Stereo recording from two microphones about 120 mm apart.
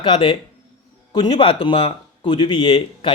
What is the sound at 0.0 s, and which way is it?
Speech, 40° left (ahead or behind).